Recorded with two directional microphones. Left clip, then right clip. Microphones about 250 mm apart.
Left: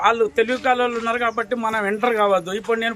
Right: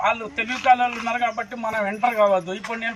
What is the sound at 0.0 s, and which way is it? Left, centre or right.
A man's voice, left.